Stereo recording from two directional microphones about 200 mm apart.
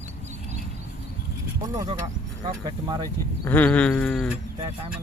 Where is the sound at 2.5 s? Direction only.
20° right (ahead or behind).